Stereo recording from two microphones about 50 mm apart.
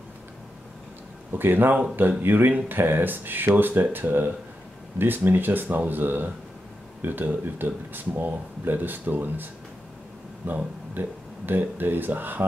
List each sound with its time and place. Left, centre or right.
1.3 s speech: right